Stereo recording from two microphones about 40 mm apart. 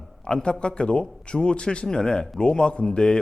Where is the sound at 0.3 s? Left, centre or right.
Left.